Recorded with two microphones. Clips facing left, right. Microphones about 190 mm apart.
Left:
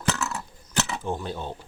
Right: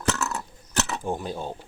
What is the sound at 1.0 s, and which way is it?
Speech, 10° right (ahead or behind).